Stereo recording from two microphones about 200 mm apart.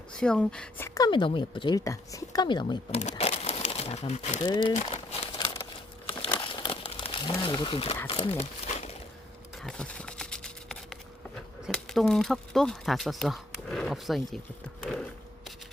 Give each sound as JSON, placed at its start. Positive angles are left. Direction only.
{"t": 0.1, "sound": "a woman's voice", "side_deg": 5}
{"t": 3.0, "sound": "a sound", "side_deg": 35}
{"t": 4.4, "sound": "a woman's voice", "side_deg": 20}
{"t": 4.7, "sound": "crumpling", "side_deg": 30}
{"t": 8.0, "sound": "speech", "side_deg": 30}
{"t": 9.6, "sound": "a sound", "side_deg": 5}
{"t": 11.6, "sound": "speech", "side_deg": 0}